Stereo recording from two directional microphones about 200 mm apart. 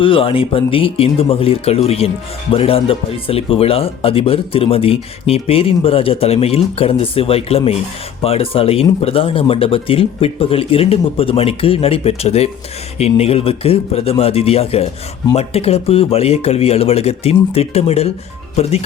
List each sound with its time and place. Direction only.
0.0 s speech: 25° left (ahead or behind)